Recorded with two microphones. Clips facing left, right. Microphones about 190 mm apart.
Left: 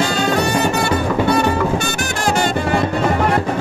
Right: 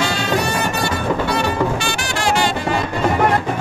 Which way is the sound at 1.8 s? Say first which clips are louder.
Left 1 dB; 50° left (ahead or behind).